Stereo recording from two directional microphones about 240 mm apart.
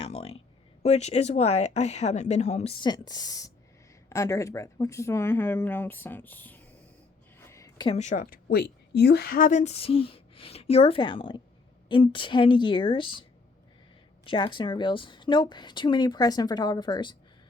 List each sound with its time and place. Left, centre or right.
0.0 s a woman's voice: left
14.3 s a woman's voice: centre